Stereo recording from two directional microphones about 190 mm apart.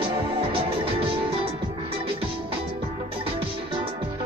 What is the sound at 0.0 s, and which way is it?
Music, 25° right (ahead or behind).